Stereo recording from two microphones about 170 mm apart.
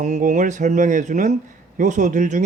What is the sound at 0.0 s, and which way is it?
Speech, 45° right (ahead or behind).